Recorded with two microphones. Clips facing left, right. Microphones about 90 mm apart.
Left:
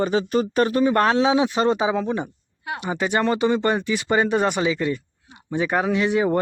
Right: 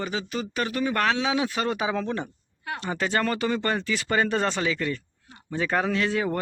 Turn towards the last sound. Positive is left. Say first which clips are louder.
# left 6 dB
turn(degrees=20)  # may be behind; listen again after turning